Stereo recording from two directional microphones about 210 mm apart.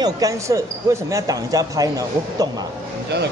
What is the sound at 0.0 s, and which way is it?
A man's voice, 15° right (ahead or behind).